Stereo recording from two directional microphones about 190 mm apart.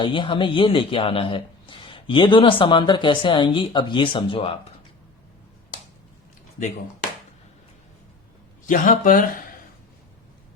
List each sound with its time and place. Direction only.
0.0 s a man's voice: 25° left (ahead or behind)
8.6 s speech: 45° left (ahead or behind)